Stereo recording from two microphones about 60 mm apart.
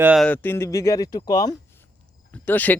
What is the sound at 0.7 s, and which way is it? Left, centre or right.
Speech, left.